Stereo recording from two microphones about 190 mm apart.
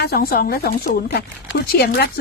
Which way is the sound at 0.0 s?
50° left (ahead or behind).